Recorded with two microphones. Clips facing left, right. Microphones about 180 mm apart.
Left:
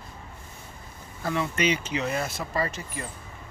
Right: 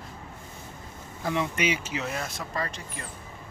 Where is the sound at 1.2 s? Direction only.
15° right (ahead or behind); by 3.0 s 5° left (ahead or behind).